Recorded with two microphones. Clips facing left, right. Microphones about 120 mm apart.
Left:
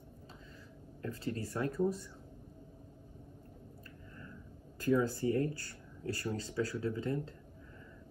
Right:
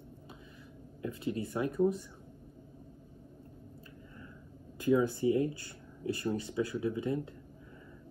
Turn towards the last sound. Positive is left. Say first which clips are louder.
# right 3 dB
turn(degrees=-20)  # may be behind; listen again after turning